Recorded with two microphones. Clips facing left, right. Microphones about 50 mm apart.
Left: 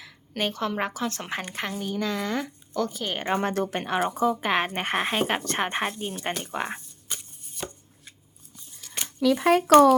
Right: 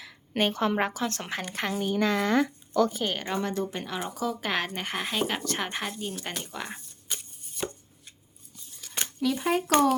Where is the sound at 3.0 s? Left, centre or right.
Centre.